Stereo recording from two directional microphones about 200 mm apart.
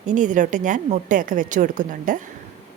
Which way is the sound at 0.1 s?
40° right (ahead or behind).